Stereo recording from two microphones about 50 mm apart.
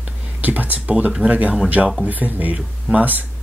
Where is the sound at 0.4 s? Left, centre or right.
Right.